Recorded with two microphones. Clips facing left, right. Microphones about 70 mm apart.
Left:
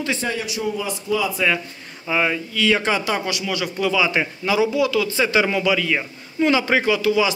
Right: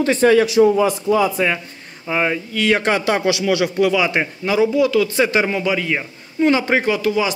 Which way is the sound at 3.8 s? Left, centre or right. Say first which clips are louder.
Even; right.